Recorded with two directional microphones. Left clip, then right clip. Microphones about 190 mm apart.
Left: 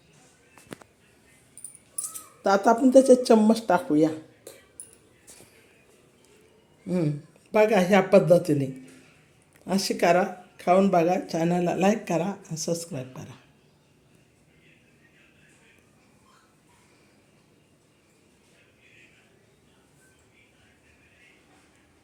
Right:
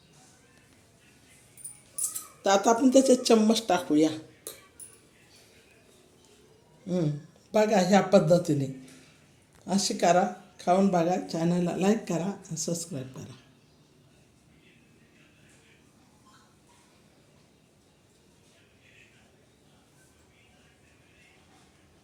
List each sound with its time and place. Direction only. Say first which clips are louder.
2.4 s speech: left 2 dB; 10° left (ahead or behind)
6.8 s speech: left 2 dB; 10° left (ahead or behind)